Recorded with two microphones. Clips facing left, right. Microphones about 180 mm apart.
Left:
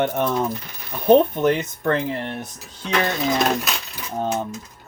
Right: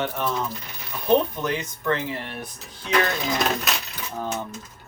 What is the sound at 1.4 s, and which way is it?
Speech, 55° left (ahead or behind).